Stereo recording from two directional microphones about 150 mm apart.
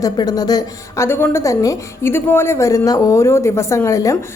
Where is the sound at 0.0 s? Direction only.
25° left (ahead or behind).